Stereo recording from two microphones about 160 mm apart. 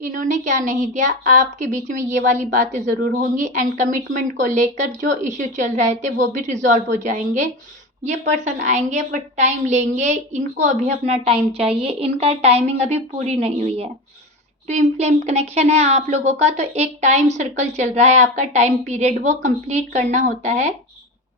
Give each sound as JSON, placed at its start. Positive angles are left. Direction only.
{"t": 0.0, "sound": "a woman's voice", "side_deg": -55}